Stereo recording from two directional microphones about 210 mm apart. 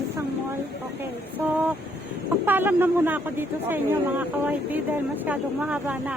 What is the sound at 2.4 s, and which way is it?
Speech, 10° right (ahead or behind).